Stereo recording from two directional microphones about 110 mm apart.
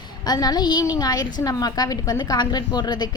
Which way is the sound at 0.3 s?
35° left (ahead or behind).